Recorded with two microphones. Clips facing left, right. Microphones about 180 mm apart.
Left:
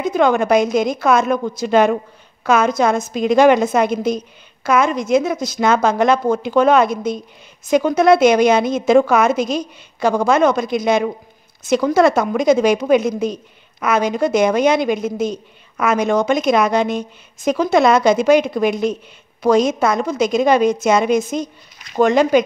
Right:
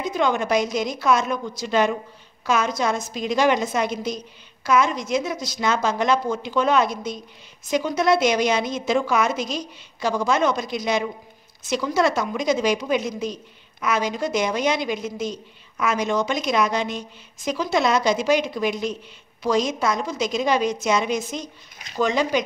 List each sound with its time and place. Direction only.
0.0 s a woman's voice: 55° left (ahead or behind)